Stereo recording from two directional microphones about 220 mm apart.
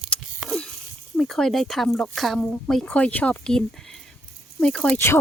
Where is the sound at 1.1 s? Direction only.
Centre (ahead or behind).